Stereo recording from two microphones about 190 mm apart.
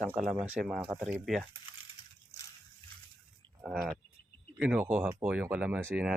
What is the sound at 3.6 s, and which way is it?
Speech, centre (ahead or behind).